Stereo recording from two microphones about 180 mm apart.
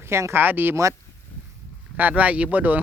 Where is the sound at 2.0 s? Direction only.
10° right (ahead or behind).